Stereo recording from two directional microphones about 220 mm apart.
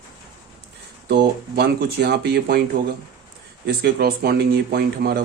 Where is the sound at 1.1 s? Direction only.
50° right (ahead or behind).